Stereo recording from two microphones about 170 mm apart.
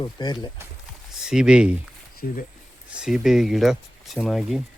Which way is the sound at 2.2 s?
50° left (ahead or behind).